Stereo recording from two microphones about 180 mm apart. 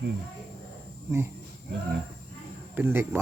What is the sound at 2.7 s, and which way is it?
Speech, 10° right (ahead or behind).